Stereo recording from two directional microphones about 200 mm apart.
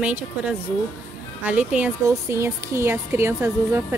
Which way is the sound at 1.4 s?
5° right (ahead or behind).